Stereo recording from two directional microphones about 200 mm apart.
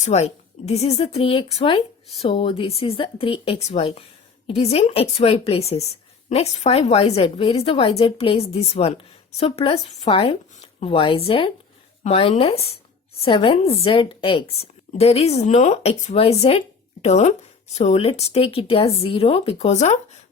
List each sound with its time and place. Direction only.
0.0 s a woman's voice: 35° left (ahead or behind)